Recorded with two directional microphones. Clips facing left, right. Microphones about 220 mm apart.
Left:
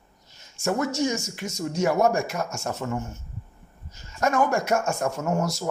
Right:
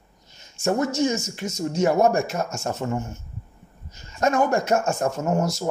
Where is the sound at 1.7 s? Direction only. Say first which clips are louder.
Right 2 dB; 25° right (ahead or behind).